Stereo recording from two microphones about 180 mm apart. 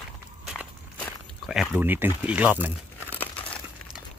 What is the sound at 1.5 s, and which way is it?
A man's voice, 5° right (ahead or behind).